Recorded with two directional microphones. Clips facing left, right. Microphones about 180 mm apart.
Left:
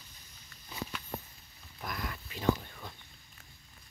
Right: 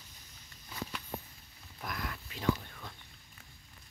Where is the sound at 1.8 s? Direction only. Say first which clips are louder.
Left 1 dB; centre (ahead or behind).